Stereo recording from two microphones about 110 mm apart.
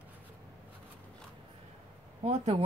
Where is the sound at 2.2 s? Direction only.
80° right.